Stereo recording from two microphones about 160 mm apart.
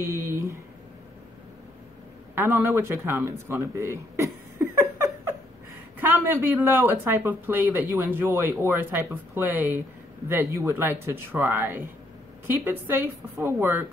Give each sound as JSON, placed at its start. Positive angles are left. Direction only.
{"t": 0.0, "sound": "a sound", "side_deg": -15}
{"t": 2.3, "sound": "speech", "side_deg": -15}
{"t": 5.9, "sound": "speech", "side_deg": -10}